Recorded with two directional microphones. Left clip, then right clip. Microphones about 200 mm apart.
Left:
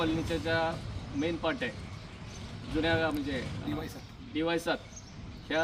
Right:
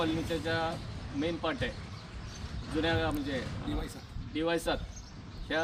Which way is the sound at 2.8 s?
Centre (ahead or behind).